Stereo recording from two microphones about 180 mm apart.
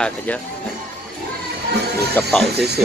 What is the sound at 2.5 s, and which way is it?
Speech, 65° right (ahead or behind).